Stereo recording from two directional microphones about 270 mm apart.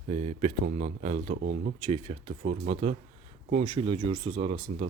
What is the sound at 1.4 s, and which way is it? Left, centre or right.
Speech, right.